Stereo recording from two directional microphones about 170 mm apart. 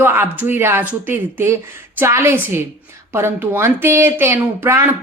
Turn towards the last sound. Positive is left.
turn(degrees=-15)  # may be behind; listen again after turning